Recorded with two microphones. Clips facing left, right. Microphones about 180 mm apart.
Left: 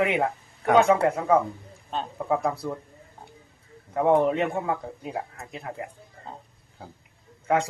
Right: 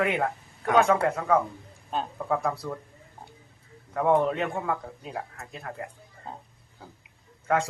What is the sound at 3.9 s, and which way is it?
Speech, 20° left (ahead or behind).